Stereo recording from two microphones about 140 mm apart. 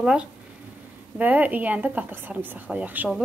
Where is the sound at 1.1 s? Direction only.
10° right (ahead or behind).